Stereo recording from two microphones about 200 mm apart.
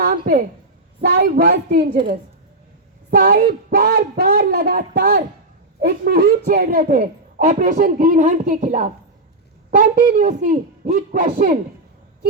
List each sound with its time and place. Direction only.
0.0 s a sound: 45° right (ahead or behind)
1.0 s speech: 45° right (ahead or behind)
3.1 s speech: 45° right (ahead or behind)